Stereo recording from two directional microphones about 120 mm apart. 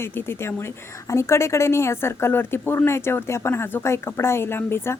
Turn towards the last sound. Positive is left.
turn(degrees=20)  # may be behind; listen again after turning